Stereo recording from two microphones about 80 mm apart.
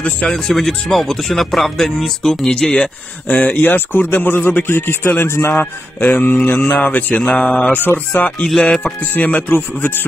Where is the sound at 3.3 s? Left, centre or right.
Left.